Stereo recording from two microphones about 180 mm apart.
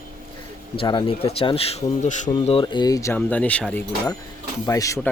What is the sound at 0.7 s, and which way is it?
Speech, 25° left (ahead or behind).